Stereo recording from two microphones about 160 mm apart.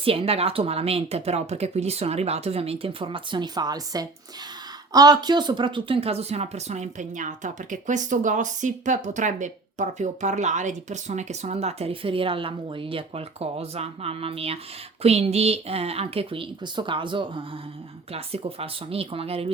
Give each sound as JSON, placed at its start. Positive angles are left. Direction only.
{"t": 0.0, "sound": "speech", "side_deg": -35}